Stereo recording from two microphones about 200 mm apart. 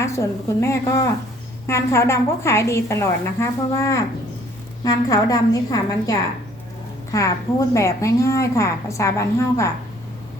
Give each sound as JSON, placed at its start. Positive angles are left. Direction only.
{"t": 0.0, "sound": "a woman's voice", "side_deg": 15}